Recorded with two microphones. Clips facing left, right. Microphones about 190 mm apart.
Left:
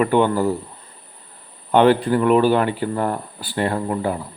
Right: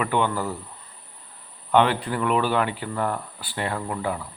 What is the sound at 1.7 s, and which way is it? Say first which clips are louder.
Speech: left 6 dB; 40° left (ahead or behind).